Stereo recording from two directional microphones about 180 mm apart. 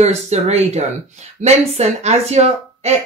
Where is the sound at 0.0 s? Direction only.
35° right (ahead or behind).